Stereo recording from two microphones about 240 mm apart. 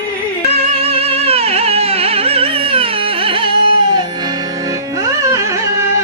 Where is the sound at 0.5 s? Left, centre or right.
Right.